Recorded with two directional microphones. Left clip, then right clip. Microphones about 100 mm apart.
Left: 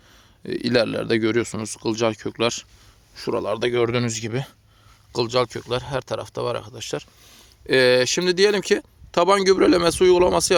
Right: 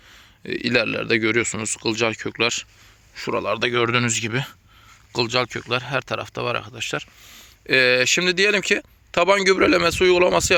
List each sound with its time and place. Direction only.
0.1 s speech: 40° left (ahead or behind)
1.5 s speech: 30° left (ahead or behind)